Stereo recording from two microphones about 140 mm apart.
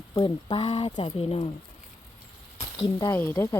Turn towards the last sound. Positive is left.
turn(degrees=20)  # may be behind; listen again after turning